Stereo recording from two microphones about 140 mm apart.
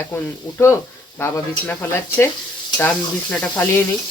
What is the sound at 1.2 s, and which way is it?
Speech, 20° left (ahead or behind).